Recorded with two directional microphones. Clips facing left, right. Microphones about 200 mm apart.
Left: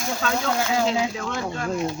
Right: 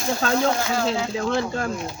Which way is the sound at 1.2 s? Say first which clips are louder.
Right 5 dB; 35° right (ahead or behind).